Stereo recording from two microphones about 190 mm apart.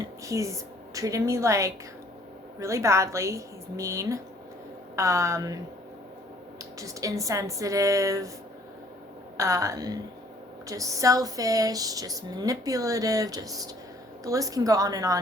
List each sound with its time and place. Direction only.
0.0 s a woman's voice: 15° right (ahead or behind)
6.7 s speech: 15° right (ahead or behind)
9.4 s speech: 15° right (ahead or behind)